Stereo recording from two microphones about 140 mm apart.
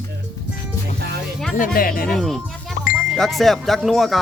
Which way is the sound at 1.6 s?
90° left.